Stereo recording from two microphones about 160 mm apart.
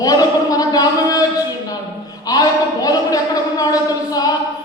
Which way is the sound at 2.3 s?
25° left (ahead or behind).